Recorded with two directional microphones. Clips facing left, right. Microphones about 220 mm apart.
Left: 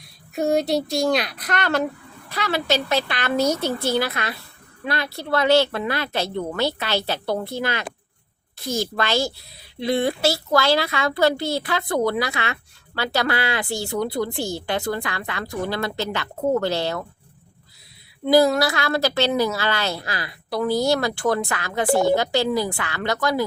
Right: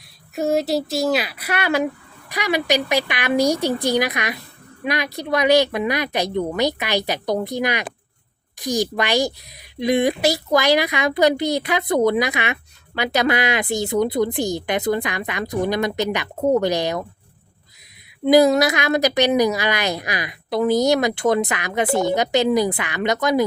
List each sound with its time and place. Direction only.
0.3 s speech: centre (ahead or behind)
18.3 s a woman's voice: 20° right (ahead or behind)